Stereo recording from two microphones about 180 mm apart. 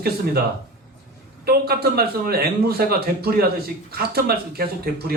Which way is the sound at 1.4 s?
60° right (ahead or behind).